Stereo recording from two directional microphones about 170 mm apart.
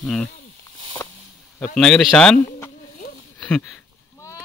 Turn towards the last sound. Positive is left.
turn(degrees=5)  # may be behind; listen again after turning